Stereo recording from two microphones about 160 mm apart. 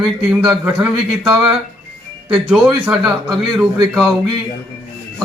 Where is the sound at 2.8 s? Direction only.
Centre (ahead or behind).